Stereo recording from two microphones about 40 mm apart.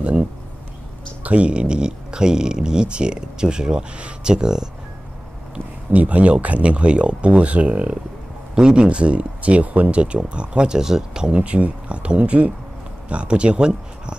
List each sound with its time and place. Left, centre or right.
0.0 s a sound: right
1.2 s speech: right; by 4.6 s centre
5.9 s speech: right
10.8 s speech: centre
11.3 s speech: right